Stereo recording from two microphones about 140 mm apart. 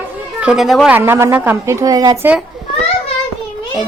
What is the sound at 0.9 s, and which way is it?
A woman's voice, 15° right (ahead or behind).